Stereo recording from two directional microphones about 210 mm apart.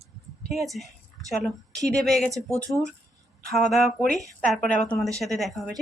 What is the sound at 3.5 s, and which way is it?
Speech, centre (ahead or behind).